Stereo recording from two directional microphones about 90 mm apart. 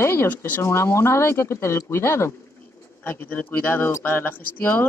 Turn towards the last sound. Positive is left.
turn(degrees=20)  # may be behind; listen again after turning